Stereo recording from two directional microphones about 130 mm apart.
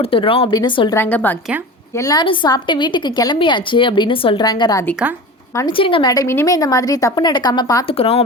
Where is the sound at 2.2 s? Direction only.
40° left (ahead or behind).